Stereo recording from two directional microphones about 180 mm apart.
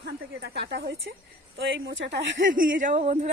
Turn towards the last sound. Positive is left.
turn(degrees=-40)  # may be behind; listen again after turning